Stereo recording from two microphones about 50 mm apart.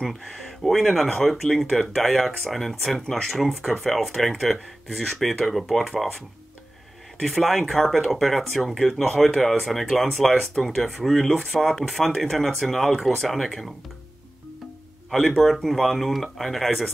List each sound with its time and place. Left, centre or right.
0.7 s speech: centre
7.2 s speech: centre
15.0 s speech: centre